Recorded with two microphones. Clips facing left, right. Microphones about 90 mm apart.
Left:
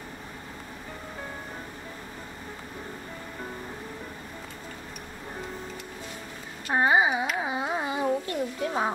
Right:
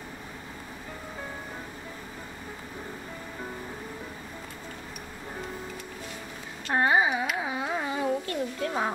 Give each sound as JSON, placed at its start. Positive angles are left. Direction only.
{"t": 6.7, "sound": "a sound", "side_deg": 15}
{"t": 7.3, "sound": "carnatic music", "side_deg": 20}
{"t": 8.3, "sound": "music", "side_deg": 15}